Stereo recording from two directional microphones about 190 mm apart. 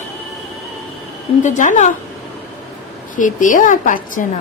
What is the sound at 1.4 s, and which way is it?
Speech, 40° left (ahead or behind).